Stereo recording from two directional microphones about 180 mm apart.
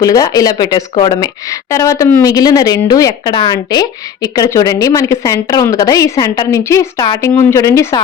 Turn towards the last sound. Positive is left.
turn(degrees=15)  # may be behind; listen again after turning